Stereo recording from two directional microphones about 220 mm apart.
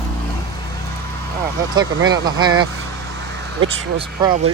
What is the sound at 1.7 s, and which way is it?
Speech, 20° right (ahead or behind).